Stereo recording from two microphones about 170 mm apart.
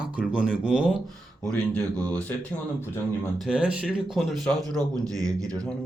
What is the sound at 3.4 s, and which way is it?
A man's voice, 5° right (ahead or behind).